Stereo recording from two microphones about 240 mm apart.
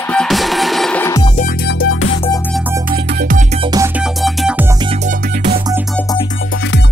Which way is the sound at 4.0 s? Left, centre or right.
Centre.